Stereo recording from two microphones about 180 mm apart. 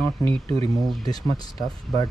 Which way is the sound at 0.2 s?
30° right (ahead or behind).